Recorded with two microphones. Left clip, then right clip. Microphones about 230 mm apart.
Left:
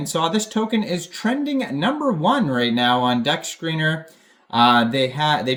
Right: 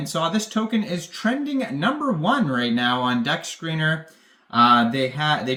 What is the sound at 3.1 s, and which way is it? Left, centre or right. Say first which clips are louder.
Speech: left 3 dB; centre.